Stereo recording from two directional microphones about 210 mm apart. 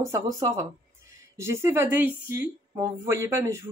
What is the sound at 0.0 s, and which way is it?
Speech, 15° right (ahead or behind).